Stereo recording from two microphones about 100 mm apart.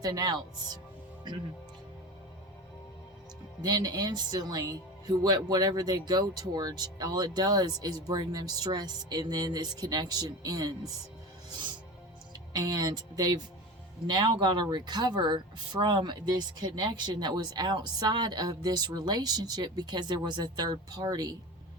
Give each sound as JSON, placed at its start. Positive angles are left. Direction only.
{"t": 0.0, "sound": "speech", "side_deg": -40}
{"t": 3.6, "sound": "speech", "side_deg": -40}
{"t": 12.5, "sound": "speech", "side_deg": -40}